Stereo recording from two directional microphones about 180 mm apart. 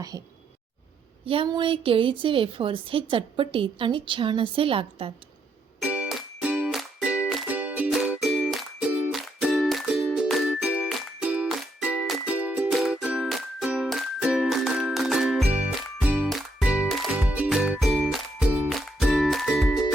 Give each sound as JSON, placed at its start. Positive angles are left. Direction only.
{"t": 1.2, "sound": "a woman's voice", "side_deg": -30}
{"t": 5.8, "sound": "music", "side_deg": -5}